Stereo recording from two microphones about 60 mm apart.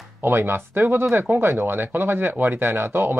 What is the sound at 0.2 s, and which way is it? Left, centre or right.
Speech, right.